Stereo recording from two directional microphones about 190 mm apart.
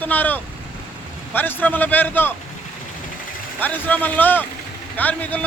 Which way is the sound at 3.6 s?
10° left (ahead or behind).